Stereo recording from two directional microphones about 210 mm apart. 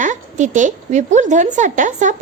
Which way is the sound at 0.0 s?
35° right (ahead or behind).